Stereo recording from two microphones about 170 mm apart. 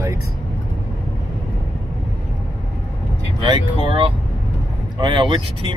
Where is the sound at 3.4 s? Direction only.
30° right (ahead or behind).